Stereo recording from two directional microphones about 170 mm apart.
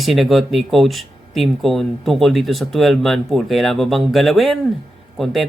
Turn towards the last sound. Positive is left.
turn(degrees=0)  # may be behind; listen again after turning